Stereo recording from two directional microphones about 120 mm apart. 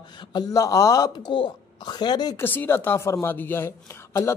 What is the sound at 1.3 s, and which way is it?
Speech, 45° left (ahead or behind).